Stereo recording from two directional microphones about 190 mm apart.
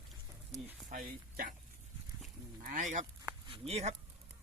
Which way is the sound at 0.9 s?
45° right (ahead or behind).